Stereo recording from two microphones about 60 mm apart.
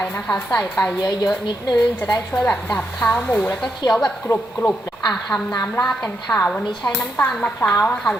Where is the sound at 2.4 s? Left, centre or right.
Centre.